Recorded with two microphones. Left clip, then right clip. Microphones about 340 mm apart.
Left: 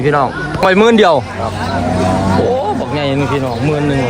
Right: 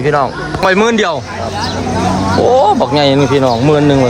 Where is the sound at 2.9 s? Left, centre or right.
Centre.